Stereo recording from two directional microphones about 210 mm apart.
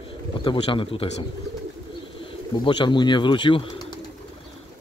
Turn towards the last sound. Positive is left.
turn(degrees=25)  # may be behind; listen again after turning